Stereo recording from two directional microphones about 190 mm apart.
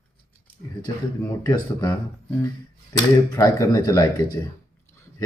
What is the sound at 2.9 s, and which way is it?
Speech, 20° left (ahead or behind).